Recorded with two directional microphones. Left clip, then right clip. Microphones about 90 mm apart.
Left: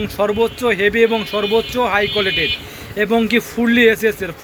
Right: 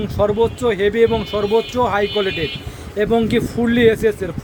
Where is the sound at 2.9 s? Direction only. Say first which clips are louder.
Left 1 dB; 35° right (ahead or behind).